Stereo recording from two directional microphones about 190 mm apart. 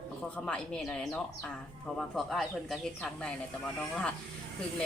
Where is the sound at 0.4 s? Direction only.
5° left (ahead or behind).